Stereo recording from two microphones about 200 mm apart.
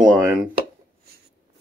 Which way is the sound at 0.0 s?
5° right (ahead or behind).